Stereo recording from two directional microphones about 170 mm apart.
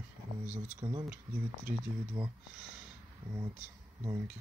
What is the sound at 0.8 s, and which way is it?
Coin, 25° right (ahead or behind).